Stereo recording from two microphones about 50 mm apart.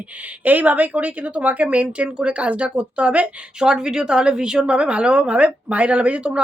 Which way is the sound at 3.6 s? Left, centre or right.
Centre.